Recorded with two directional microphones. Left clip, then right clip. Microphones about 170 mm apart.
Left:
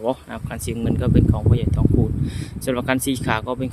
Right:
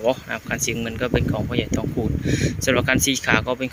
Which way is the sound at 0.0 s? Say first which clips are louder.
Right 3 dB; 15° left (ahead or behind).